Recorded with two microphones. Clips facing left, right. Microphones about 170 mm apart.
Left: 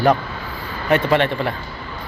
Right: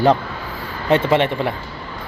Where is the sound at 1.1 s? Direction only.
20° right (ahead or behind).